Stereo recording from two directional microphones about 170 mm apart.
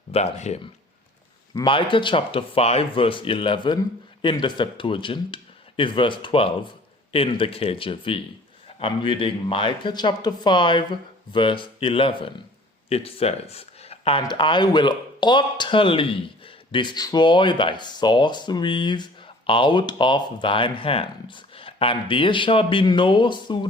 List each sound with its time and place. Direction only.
0.1 s speech: 40° left (ahead or behind)
1.5 s speech: 30° left (ahead or behind)